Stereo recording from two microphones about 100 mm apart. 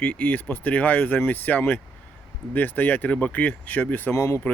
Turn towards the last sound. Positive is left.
turn(degrees=30)  # may be behind; listen again after turning